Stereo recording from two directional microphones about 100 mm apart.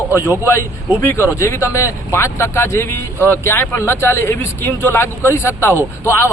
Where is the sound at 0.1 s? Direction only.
30° left (ahead or behind).